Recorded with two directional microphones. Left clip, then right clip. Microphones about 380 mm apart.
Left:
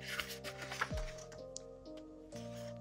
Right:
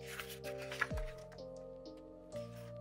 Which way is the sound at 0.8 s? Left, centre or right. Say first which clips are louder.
Right 1 dB; centre.